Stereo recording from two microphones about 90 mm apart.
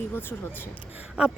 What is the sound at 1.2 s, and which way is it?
Speech, 10° right (ahead or behind).